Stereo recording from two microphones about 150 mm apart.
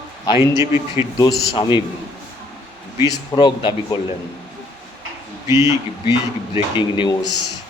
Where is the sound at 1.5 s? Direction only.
30° left (ahead or behind).